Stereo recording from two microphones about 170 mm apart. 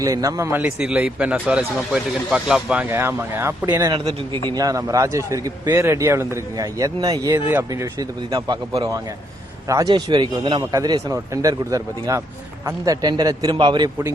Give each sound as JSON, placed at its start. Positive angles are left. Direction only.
{"t": 0.0, "sound": "a man's voice", "side_deg": -20}
{"t": 3.9, "sound": "a man's voice", "side_deg": -30}